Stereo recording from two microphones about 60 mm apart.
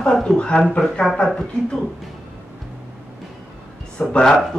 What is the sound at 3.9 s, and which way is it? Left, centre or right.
Speech, centre.